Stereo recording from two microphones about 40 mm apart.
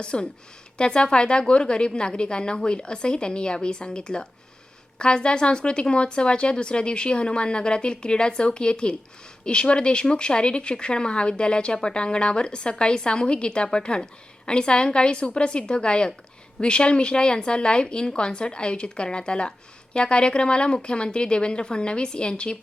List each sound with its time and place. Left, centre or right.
0.0 s a woman's voice: left